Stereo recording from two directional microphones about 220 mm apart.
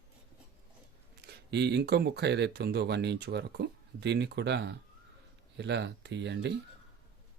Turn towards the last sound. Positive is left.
turn(degrees=-55)  # may be behind; listen again after turning